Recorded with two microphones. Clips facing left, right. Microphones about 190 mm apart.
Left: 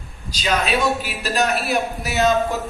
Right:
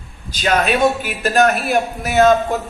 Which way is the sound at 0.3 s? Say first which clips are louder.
Right 4 dB; 50° right (ahead or behind).